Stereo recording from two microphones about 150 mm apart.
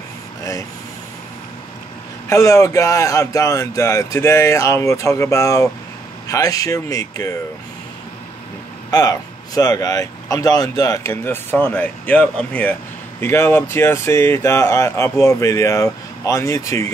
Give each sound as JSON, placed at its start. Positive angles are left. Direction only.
{"t": 2.2, "sound": "speech", "side_deg": 20}
{"t": 8.9, "sound": "speech", "side_deg": 25}